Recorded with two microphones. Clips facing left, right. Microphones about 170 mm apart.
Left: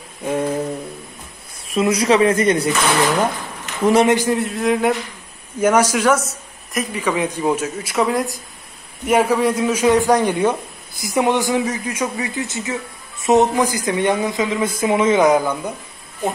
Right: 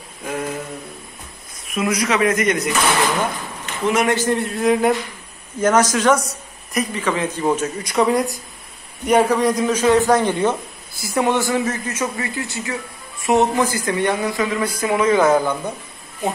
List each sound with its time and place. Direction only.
0.2 s a sound: 25° left (ahead or behind)
1.7 s speech: 30° left (ahead or behind)
3.8 s speech: 30° left (ahead or behind)
4.1 s a man's voice: 15° left (ahead or behind)
4.4 s a man's voice: centre (ahead or behind)